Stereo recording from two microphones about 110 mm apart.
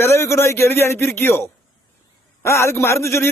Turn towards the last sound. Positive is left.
turn(degrees=25)  # may be behind; listen again after turning